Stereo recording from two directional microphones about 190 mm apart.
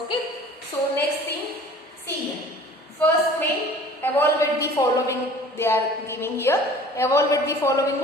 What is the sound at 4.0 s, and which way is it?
A woman's voice, 10° left (ahead or behind).